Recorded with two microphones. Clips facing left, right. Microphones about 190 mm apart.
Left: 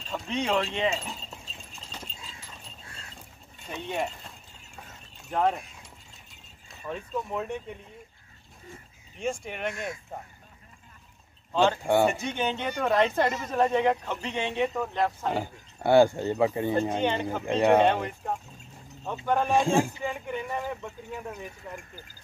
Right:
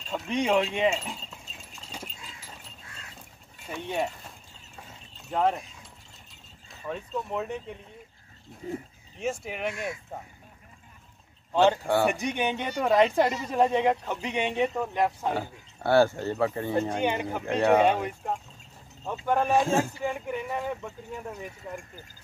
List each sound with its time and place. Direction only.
0.1 s speech: 10° right (ahead or behind)
3.6 s speech: centre (ahead or behind)
5.3 s speech: centre (ahead or behind)
6.9 s speech: centre (ahead or behind)
9.2 s speech: 5° right (ahead or behind)
11.5 s speech: 15° right (ahead or behind)
11.8 s speech: 20° left (ahead or behind)
12.1 s speech: 15° right (ahead or behind)
15.3 s speech: 15° left (ahead or behind)
16.9 s speech: 10° right (ahead or behind)
17.4 s speech: 10° left (ahead or behind)
17.7 s speech: 10° right (ahead or behind)